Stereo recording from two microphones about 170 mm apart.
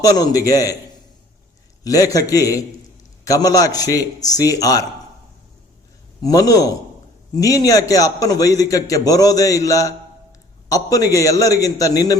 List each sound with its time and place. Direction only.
0.0 s a man's voice: 20° left (ahead or behind)
1.8 s a man's voice: 20° left (ahead or behind)
6.2 s a man's voice: 20° left (ahead or behind)